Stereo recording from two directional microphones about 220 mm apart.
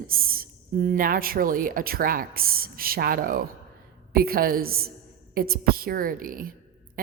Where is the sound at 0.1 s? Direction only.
40° right (ahead or behind).